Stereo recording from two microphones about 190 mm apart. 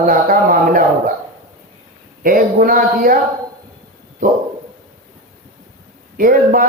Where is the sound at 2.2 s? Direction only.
50° right (ahead or behind).